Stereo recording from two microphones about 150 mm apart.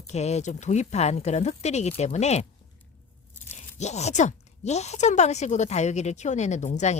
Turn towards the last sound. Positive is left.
turn(degrees=50)  # may be behind; listen again after turning